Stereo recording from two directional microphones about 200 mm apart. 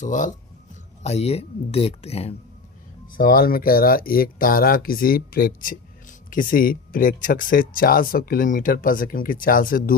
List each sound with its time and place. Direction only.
0.0 s speech: 40° left (ahead or behind)
3.2 s speech: 45° left (ahead or behind)